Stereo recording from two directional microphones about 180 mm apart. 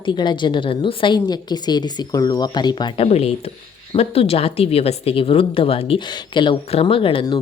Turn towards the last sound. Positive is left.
turn(degrees=25)  # may be behind; listen again after turning